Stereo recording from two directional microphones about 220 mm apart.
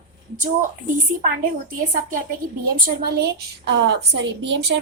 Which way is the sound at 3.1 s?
45° right (ahead or behind).